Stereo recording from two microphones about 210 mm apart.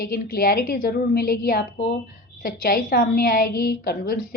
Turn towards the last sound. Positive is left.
turn(degrees=50)  # may be behind; listen again after turning